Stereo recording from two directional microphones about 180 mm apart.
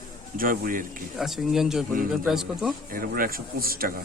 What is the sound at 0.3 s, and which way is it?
Speech, 50° right (ahead or behind).